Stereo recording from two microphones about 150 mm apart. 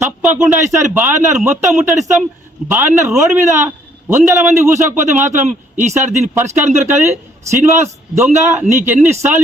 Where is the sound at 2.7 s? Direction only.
15° right (ahead or behind).